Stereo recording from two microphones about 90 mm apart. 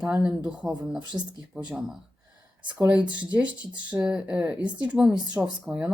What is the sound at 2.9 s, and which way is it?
Speech, 15° right (ahead or behind).